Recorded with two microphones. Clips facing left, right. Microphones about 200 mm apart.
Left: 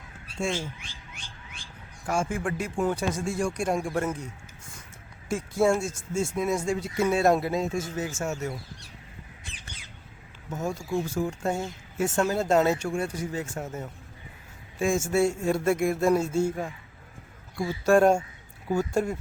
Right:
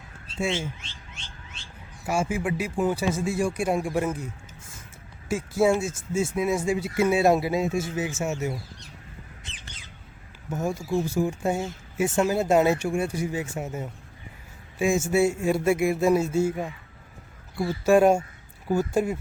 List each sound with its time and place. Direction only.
1.1 s a sound: 25° right (ahead or behind)
2.0 s speech: 5° right (ahead or behind)
5.3 s speech: 5° right (ahead or behind)
10.5 s speech: 5° right (ahead or behind)
17.8 s speech: 5° right (ahead or behind)